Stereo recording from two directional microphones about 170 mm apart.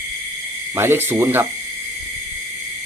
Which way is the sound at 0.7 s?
15° right (ahead or behind).